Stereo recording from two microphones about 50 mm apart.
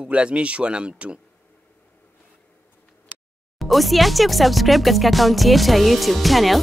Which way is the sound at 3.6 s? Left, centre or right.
Centre.